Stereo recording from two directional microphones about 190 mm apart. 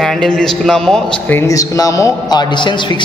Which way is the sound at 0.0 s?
5° left (ahead or behind).